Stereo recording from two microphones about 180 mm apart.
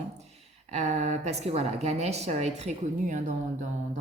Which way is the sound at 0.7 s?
40° right (ahead or behind).